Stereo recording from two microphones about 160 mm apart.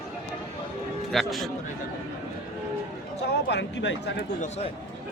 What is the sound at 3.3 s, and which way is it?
Speech, 90° left.